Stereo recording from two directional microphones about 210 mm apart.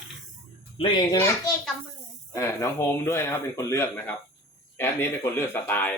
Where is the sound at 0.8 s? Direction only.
20° left (ahead or behind).